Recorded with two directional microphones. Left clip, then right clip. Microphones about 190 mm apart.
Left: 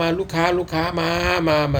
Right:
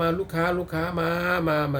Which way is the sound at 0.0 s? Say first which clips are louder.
Left 5 dB; 15° right (ahead or behind).